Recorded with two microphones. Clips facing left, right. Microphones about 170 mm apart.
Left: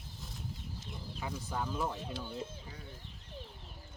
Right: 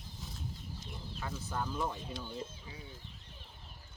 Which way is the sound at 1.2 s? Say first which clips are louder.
Left 1 dB; 10° left (ahead or behind).